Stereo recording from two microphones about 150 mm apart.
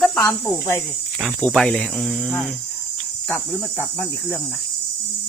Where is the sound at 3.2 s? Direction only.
10° left (ahead or behind).